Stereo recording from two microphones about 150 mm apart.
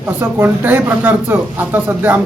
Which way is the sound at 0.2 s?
15° right (ahead or behind).